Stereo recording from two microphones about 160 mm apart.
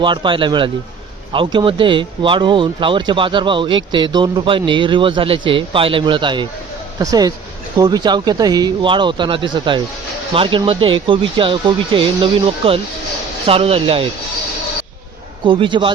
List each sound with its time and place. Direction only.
0.0 s speech: 30° right (ahead or behind)
15.4 s speech: 30° right (ahead or behind)